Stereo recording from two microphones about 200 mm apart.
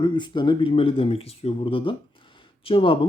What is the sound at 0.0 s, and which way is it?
Speech, 20° left (ahead or behind).